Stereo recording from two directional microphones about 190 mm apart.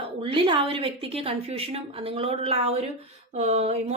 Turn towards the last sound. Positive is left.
turn(degrees=-35)  # may be behind; listen again after turning